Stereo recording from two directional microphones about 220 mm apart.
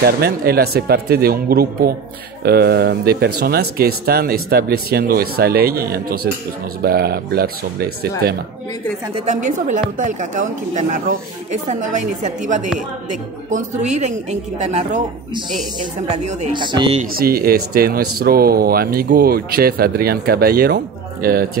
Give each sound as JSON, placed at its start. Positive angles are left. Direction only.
{"t": 0.0, "sound": "speech", "side_deg": -45}
{"t": 9.1, "sound": "a woman's voice", "side_deg": -35}
{"t": 16.1, "sound": "speech", "side_deg": -30}
{"t": 17.1, "sound": "speech", "side_deg": -40}